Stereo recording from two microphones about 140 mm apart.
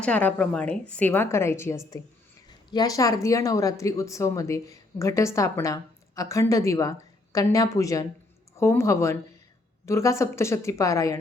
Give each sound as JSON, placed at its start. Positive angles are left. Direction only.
{"t": 0.0, "sound": "a woman's voice", "side_deg": 10}
{"t": 2.5, "sound": "a woman's voice", "side_deg": 30}